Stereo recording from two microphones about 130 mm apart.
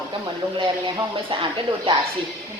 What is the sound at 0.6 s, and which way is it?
Speech, 40° right (ahead or behind).